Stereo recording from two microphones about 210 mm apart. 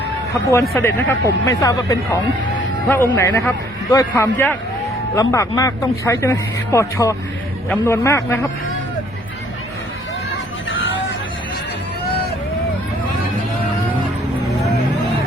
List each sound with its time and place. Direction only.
0.8 s speech: 10° left (ahead or behind)
10.7 s vehicle: 60° left (ahead or behind)